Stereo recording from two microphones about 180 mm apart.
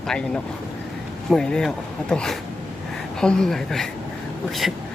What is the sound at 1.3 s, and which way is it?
Speech, 5° left (ahead or behind).